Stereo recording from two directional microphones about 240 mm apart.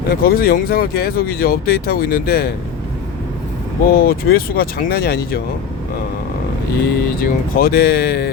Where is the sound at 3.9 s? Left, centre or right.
Left.